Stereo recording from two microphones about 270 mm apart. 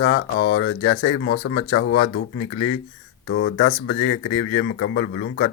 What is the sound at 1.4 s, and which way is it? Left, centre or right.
Speech, left.